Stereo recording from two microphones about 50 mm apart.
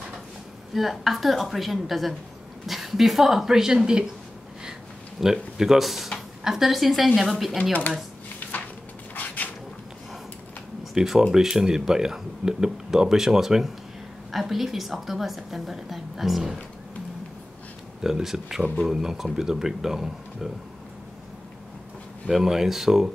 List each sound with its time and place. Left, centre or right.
0.7 s a woman's voice: centre
5.2 s a woman's voice: centre
9.1 s a sound: left
11.0 s a woman's voice: centre
18.0 s speech: centre
22.3 s speech: centre